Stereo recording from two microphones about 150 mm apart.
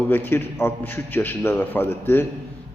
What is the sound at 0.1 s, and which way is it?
A man's voice, 15° left (ahead or behind).